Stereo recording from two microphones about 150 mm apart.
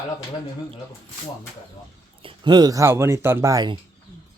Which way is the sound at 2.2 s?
30° right (ahead or behind).